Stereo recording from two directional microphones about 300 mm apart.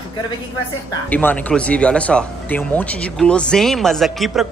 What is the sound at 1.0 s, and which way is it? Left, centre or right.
Speech, centre.